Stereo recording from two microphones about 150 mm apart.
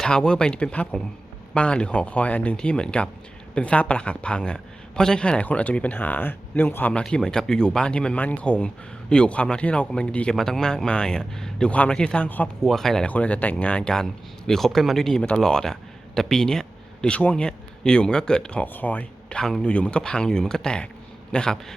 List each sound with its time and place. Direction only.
0.0 s a man's voice: 5° left (ahead or behind)